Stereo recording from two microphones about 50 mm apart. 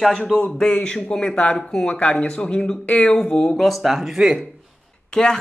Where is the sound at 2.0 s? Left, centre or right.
Left.